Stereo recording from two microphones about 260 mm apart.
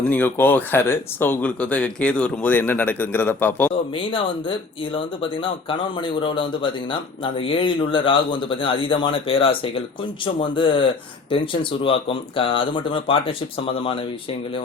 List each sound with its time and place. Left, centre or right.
0.0 s speech: centre
3.9 s speech: centre